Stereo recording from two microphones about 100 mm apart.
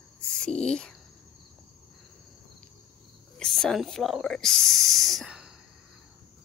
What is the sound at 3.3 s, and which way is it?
Speech, 5° left (ahead or behind).